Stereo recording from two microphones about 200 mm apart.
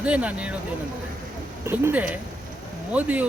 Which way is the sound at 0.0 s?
5° right (ahead or behind).